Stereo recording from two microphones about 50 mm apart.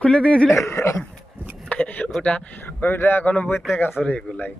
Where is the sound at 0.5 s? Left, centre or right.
Left.